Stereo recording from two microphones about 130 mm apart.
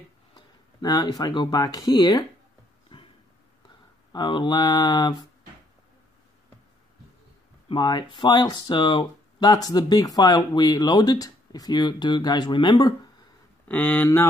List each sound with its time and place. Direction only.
0.7 s speech: 30° left (ahead or behind)
2.9 s a sound: 45° left (ahead or behind)
4.1 s speech: 35° left (ahead or behind)
7.6 s speech: 35° left (ahead or behind)
13.7 s speech: 15° left (ahead or behind)